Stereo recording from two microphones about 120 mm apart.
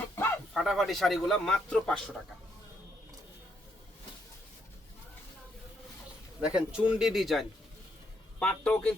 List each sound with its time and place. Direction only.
0.0 s a sound: 20° left (ahead or behind)
0.5 s a man's voice: centre (ahead or behind)
6.4 s speech: 10° right (ahead or behind)
8.4 s a man's voice: 10° left (ahead or behind)